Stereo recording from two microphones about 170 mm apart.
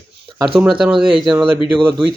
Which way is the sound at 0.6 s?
5° right (ahead or behind).